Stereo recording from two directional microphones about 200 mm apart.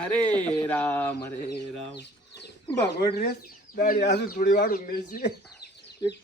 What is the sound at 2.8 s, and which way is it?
Speech, 50° left (ahead or behind).